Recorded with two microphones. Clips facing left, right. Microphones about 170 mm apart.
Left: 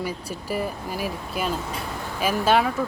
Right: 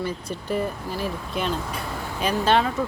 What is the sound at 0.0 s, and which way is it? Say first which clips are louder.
Speech: right 1 dB; 10° left (ahead or behind).